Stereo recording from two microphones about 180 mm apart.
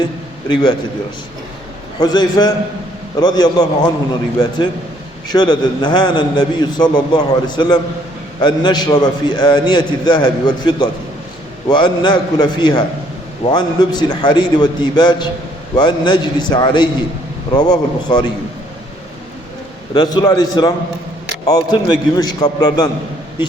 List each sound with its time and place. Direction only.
0.0 s a man's voice: 25° left (ahead or behind)
2.0 s a man's voice: 25° left (ahead or behind)
19.9 s a man's voice: 25° left (ahead or behind)